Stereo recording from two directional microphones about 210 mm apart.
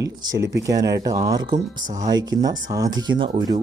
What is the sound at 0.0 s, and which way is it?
Speech, 20° right (ahead or behind).